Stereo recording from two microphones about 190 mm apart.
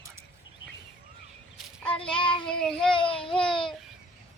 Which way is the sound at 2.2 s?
25° left (ahead or behind).